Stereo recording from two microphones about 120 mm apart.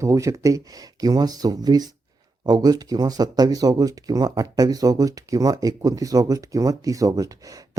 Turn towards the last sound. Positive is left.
turn(degrees=-30)  # may be behind; listen again after turning